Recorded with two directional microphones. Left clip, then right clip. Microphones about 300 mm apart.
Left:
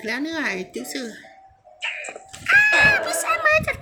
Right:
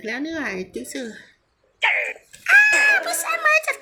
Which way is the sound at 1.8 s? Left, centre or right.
Right.